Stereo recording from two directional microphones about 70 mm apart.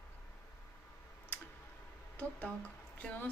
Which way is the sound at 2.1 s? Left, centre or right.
Left.